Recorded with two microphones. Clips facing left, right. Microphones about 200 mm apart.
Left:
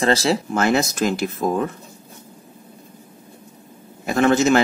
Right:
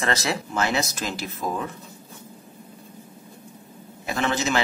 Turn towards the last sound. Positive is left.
turn(degrees=45)  # may be behind; listen again after turning